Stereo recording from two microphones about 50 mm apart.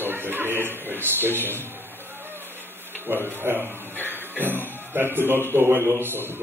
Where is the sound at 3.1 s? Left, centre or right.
Right.